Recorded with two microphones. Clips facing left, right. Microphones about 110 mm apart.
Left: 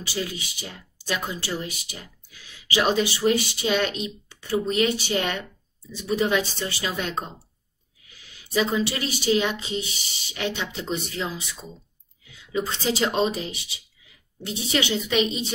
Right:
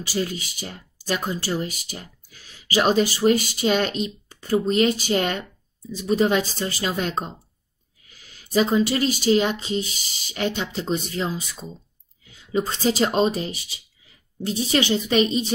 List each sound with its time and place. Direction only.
0.0 s speech: 40° right (ahead or behind)